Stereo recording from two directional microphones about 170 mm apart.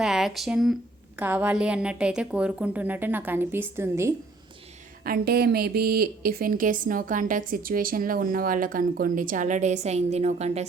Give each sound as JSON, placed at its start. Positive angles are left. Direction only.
{"t": 0.0, "sound": "a woman's voice", "side_deg": -5}
{"t": 5.0, "sound": "a woman's voice", "side_deg": -65}